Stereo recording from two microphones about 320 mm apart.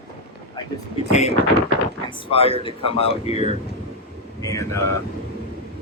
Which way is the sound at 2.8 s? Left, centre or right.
Centre.